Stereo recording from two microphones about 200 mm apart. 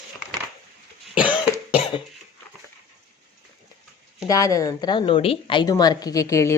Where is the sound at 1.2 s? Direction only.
25° left (ahead or behind).